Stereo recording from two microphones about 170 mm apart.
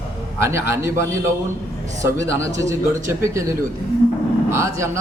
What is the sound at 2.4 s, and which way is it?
A man's voice, 20° right (ahead or behind).